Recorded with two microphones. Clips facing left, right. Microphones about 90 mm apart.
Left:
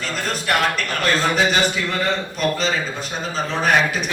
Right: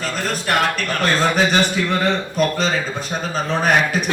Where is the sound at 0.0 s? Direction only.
45° right (ahead or behind).